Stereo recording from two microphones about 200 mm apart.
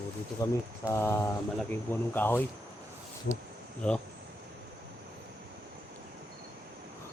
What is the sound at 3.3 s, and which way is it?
Speech, 60° left (ahead or behind).